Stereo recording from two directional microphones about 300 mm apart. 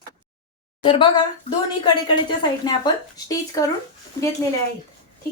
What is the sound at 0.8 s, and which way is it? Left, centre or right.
Speech, centre.